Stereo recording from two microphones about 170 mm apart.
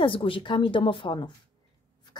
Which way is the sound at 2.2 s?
25° left (ahead or behind).